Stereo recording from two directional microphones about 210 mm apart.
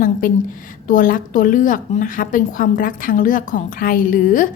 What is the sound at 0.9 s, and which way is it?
A woman's voice, 40° left (ahead or behind).